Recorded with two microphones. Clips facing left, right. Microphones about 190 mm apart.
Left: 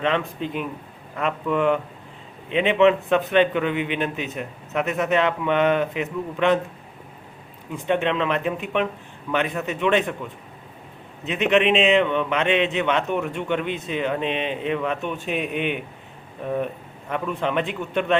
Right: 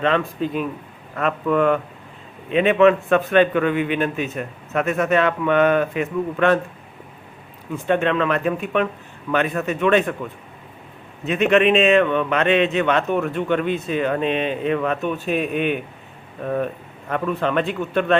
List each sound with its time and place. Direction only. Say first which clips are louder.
0.0 s a man's voice: right 3 dB; 15° left (ahead or behind)
7.9 s a man's voice: right 3 dB; 15° left (ahead or behind)
11.4 s a man's voice: right 3 dB; 20° left (ahead or behind)